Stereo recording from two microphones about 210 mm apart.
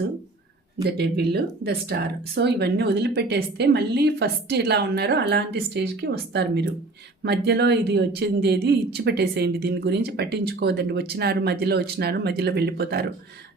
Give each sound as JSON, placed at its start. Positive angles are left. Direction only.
{"t": 0.9, "sound": "speech", "side_deg": -50}